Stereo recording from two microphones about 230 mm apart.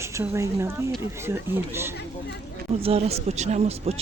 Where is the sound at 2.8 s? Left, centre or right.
Right.